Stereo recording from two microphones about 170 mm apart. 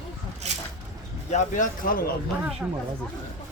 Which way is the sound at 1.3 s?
50° left (ahead or behind).